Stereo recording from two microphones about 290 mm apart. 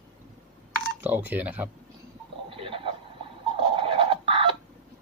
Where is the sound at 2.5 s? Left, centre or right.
Centre.